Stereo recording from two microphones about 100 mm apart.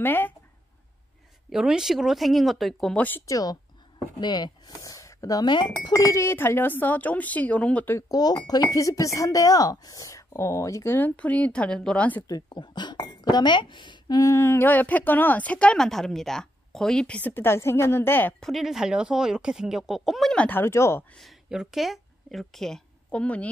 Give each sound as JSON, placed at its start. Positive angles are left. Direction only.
{"t": 0.0, "sound": "speech", "side_deg": 20}
{"t": 1.5, "sound": "speech", "side_deg": -5}
{"t": 3.3, "sound": "speech", "side_deg": 35}
{"t": 4.2, "sound": "speech", "side_deg": 45}
{"t": 8.1, "sound": "speech", "side_deg": 40}
{"t": 12.3, "sound": "speech", "side_deg": 45}
{"t": 17.3, "sound": "speech", "side_deg": 25}
{"t": 18.4, "sound": "speech", "side_deg": 0}
{"t": 20.3, "sound": "speech", "side_deg": 20}
{"t": 21.2, "sound": "speech", "side_deg": -5}